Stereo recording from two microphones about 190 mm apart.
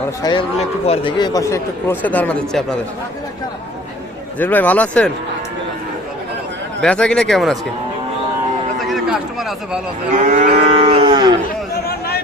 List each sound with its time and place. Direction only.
0.2 s speech: 20° left (ahead or behind); by 2.7 s 5° left (ahead or behind)
4.4 s speech: 10° left (ahead or behind)
6.8 s speech: 5° left (ahead or behind)
8.8 s a sound: centre (ahead or behind)
10.2 s moo: 40° right (ahead or behind); by 11.3 s 25° right (ahead or behind)
11.9 s a sound: 55° left (ahead or behind)